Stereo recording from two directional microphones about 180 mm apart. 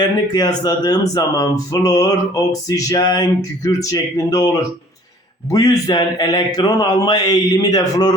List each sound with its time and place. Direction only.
0.0 s speech: 20° left (ahead or behind)
5.5 s speech: 20° left (ahead or behind)